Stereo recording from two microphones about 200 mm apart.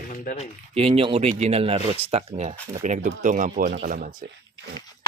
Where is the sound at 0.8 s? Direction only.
30° right (ahead or behind).